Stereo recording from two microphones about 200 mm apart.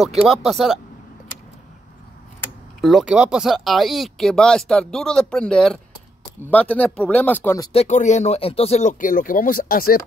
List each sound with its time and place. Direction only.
0.2 s speech: centre (ahead or behind)
2.8 s speech: centre (ahead or behind)
7.7 s speech: 35° left (ahead or behind)